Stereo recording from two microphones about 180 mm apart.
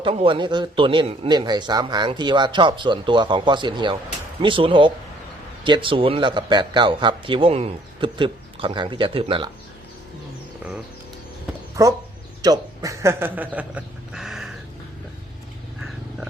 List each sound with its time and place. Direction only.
0.0 s a man's voice: 30° right (ahead or behind)
11.8 s a man's voice: 20° right (ahead or behind); by 14.5 s centre (ahead or behind)